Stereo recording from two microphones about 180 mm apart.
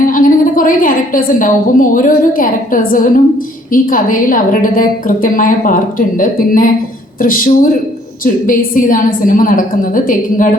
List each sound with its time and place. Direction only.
0.0 s a woman's voice: 50° left (ahead or behind)